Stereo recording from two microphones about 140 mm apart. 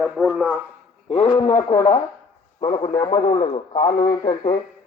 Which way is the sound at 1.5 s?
65° left (ahead or behind).